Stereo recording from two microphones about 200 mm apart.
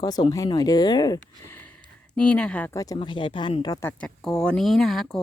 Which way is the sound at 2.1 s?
5° left (ahead or behind).